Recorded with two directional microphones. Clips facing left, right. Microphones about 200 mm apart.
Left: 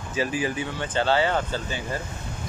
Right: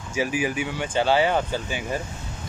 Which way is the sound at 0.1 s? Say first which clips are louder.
Right 1 dB; 10° right (ahead or behind).